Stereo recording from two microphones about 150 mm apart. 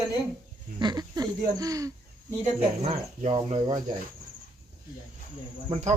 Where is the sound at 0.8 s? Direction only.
30° right (ahead or behind).